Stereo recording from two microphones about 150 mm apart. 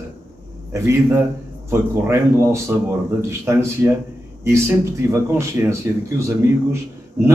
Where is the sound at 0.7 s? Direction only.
20° right (ahead or behind).